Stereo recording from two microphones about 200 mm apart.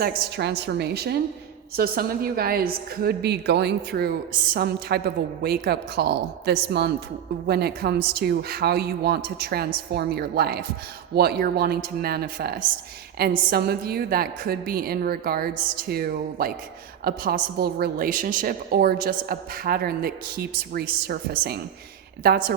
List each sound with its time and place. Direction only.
0.0 s a woman's voice: 50° right (ahead or behind)